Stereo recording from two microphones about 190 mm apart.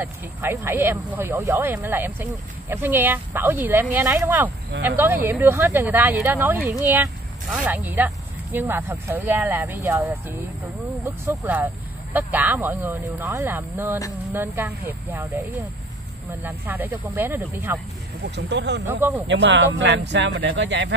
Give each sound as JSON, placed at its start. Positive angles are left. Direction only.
{"t": 0.0, "sound": "speech", "side_deg": -10}
{"t": 16.3, "sound": "speech", "side_deg": -10}
{"t": 18.3, "sound": "speech", "side_deg": -65}
{"t": 18.9, "sound": "speech", "side_deg": -10}
{"t": 19.2, "sound": "speech", "side_deg": -70}